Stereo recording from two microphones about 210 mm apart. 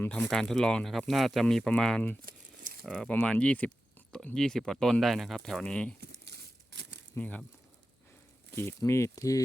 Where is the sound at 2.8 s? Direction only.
5° left (ahead or behind).